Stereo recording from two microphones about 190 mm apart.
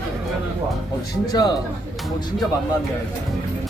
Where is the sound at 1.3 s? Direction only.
20° left (ahead or behind).